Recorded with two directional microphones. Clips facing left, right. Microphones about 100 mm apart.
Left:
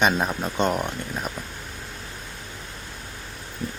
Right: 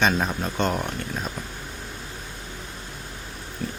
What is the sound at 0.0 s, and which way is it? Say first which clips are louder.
Speech: left 1 dB; 15° left (ahead or behind).